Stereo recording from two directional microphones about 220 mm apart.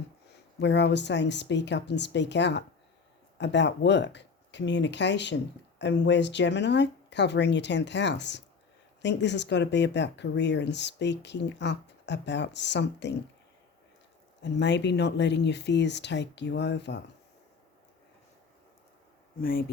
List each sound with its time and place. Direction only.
0.3 s speech: 50° left (ahead or behind)
14.4 s speech: 50° left (ahead or behind)
19.4 s speech: 40° left (ahead or behind)